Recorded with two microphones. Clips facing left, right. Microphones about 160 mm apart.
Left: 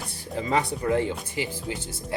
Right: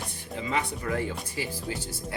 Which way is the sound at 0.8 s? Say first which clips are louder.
Left 6 dB; 20° left (ahead or behind).